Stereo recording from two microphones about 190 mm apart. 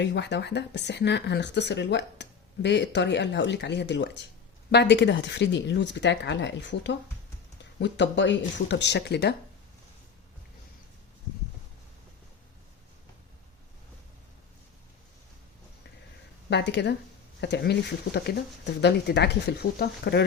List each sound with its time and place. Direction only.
0.0 s speech: 65° left (ahead or behind)
16.5 s speech: 65° left (ahead or behind)